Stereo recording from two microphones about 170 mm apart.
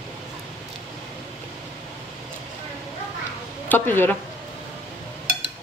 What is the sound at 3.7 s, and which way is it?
Speech, 10° left (ahead or behind).